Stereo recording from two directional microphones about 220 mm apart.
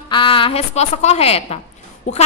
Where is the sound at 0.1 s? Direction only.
25° left (ahead or behind).